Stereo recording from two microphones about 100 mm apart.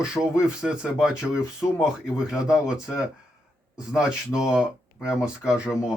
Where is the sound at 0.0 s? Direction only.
5° right (ahead or behind).